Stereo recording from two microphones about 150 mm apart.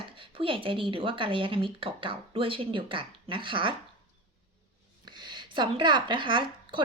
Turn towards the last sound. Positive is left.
turn(degrees=-35)  # may be behind; listen again after turning